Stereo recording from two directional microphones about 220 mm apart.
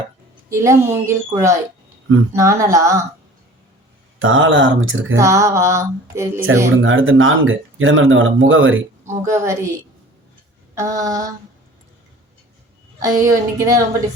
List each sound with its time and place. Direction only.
0.5 s mantra: 15° right (ahead or behind)
4.2 s speech: 60° right (ahead or behind)
5.1 s mantra: 15° right (ahead or behind)
6.7 s speech: 60° right (ahead or behind)
9.3 s mantra: 15° right (ahead or behind)
10.8 s mantra: 15° right (ahead or behind)
13.0 s mantra: 15° right (ahead or behind)